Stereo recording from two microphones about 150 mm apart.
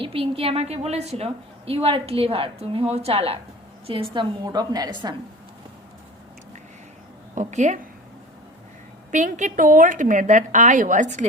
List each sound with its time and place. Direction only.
0.0 s a woman's voice: 40° right (ahead or behind)
7.3 s a woman's voice: 50° right (ahead or behind)
9.1 s a woman's voice: 55° right (ahead or behind)